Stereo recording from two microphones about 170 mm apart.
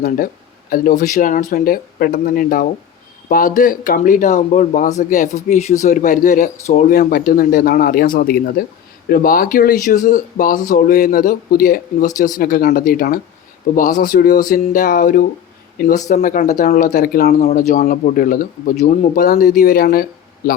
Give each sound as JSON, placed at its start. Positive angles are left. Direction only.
{"t": 0.7, "sound": "speech", "side_deg": 55}